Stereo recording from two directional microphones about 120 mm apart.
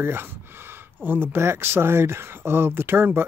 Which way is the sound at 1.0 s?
15° right (ahead or behind).